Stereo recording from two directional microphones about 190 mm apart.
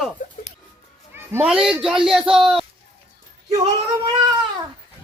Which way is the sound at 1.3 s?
5° right (ahead or behind).